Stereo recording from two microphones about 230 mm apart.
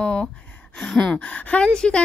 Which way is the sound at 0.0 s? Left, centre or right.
Centre.